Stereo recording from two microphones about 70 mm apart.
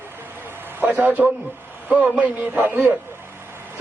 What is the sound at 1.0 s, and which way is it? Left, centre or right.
A man's voice, right.